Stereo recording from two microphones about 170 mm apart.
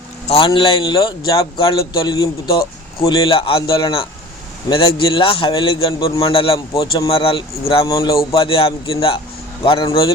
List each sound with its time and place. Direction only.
0.3 s a man's voice: 30° left (ahead or behind)
7.9 s a man's voice: 20° left (ahead or behind)
8.4 s a man's voice: 30° left (ahead or behind)